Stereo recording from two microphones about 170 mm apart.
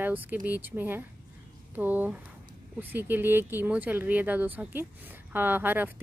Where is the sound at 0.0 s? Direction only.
10° right (ahead or behind).